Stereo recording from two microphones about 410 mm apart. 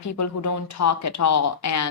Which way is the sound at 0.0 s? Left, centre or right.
Left.